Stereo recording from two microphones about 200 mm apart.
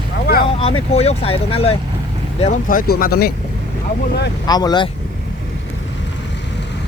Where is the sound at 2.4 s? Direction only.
40° left (ahead or behind).